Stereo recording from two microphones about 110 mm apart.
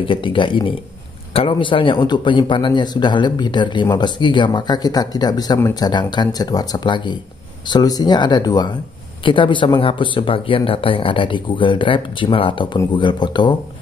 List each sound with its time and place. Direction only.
0.0 s speech: 50° left (ahead or behind)